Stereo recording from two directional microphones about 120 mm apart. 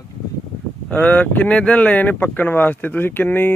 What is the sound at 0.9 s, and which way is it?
Speech, 10° left (ahead or behind).